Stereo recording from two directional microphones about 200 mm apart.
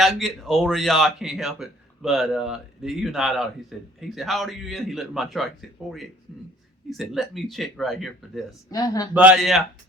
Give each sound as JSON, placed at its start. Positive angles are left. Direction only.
{"t": 0.0, "sound": "speech", "side_deg": 0}
{"t": 6.9, "sound": "speech", "side_deg": 0}
{"t": 8.7, "sound": "speech", "side_deg": 20}
{"t": 9.1, "sound": "speech", "side_deg": -5}